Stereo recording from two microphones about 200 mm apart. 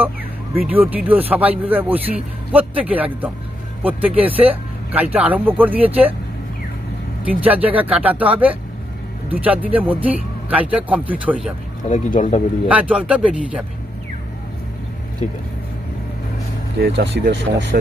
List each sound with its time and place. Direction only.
0.6 s speech: 10° right (ahead or behind)
7.3 s speech: 10° right (ahead or behind)
11.9 s speech: 40° left (ahead or behind)
12.6 s speech: 5° right (ahead or behind)
16.8 s speech: 55° right (ahead or behind)